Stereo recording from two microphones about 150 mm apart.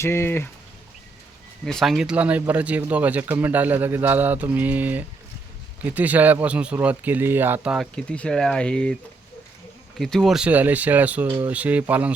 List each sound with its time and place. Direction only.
0.0 s speech: 15° left (ahead or behind)
1.6 s speech: centre (ahead or behind)
10.0 s speech: centre (ahead or behind)